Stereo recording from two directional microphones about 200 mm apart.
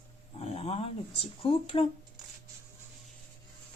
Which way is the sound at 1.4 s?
25° left (ahead or behind).